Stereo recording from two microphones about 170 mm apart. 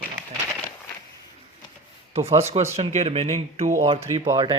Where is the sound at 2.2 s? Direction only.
35° right (ahead or behind).